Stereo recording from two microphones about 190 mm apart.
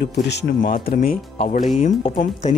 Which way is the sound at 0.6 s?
45° left (ahead or behind).